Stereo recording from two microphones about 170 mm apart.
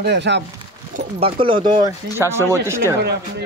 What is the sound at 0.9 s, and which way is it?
Speech, 35° right (ahead or behind).